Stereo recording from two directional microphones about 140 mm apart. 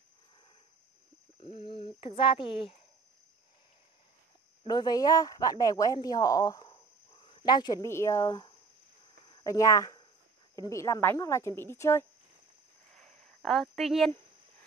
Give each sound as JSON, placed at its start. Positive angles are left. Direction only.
{"t": 1.6, "sound": "speech", "side_deg": 40}
{"t": 4.6, "sound": "speech", "side_deg": 30}
{"t": 12.9, "sound": "a sound", "side_deg": 5}